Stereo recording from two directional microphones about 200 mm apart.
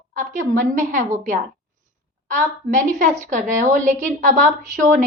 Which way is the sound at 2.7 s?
40° right (ahead or behind).